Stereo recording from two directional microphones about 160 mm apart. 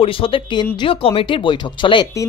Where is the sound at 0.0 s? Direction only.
35° left (ahead or behind).